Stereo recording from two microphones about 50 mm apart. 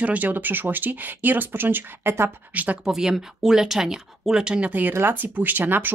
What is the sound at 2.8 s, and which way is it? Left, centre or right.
Speech, centre.